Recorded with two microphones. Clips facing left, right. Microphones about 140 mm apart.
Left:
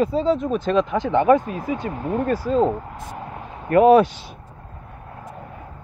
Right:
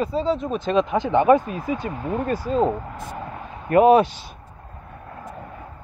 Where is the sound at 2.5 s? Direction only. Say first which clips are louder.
Left 2 dB; 5° right (ahead or behind).